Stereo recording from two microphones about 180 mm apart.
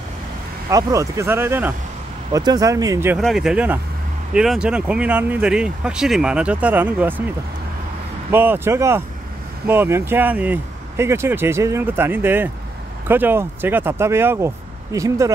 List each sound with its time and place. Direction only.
0.7 s speech: 20° right (ahead or behind)
3.2 s speech: centre (ahead or behind)
8.3 s speech: 10° right (ahead or behind)